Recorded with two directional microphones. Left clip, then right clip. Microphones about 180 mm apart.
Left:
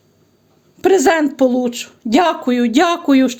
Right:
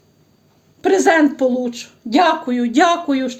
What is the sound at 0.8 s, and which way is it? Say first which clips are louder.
Speech: left 1 dB; 60° left (ahead or behind).